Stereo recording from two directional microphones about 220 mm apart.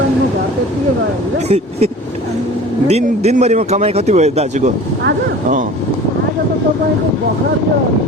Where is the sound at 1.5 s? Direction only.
30° right (ahead or behind).